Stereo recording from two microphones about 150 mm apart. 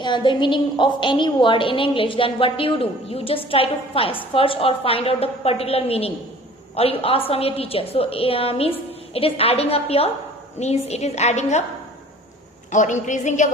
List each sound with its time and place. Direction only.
0.0 s a woman's voice: 30° left (ahead or behind); by 11.6 s 50° left (ahead or behind)
12.7 s a woman's voice: 55° left (ahead or behind)